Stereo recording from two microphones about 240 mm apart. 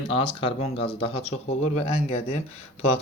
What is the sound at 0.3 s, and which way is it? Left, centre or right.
Speech, left.